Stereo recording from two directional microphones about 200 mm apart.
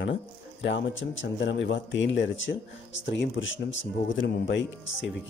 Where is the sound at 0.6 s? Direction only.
70° left (ahead or behind).